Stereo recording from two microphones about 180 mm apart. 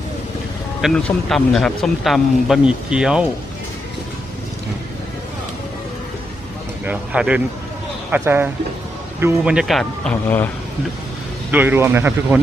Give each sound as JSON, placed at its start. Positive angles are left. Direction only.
{"t": 0.8, "sound": "speech", "side_deg": 0}
{"t": 6.8, "sound": "speech", "side_deg": -5}
{"t": 11.5, "sound": "speech", "side_deg": -10}